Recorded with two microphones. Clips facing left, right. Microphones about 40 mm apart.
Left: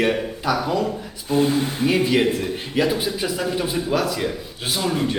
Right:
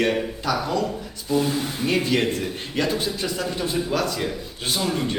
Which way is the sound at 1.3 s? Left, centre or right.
Left.